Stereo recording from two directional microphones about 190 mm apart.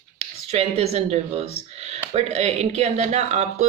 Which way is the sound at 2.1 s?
35° right (ahead or behind).